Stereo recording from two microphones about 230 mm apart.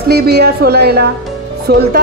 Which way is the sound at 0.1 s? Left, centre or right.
Right.